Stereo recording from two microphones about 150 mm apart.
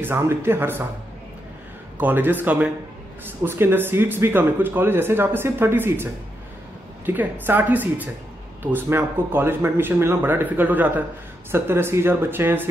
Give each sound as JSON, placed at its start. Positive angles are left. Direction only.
{"t": 0.0, "sound": "speech", "side_deg": -15}
{"t": 2.0, "sound": "speech", "side_deg": -10}
{"t": 7.1, "sound": "speech", "side_deg": -10}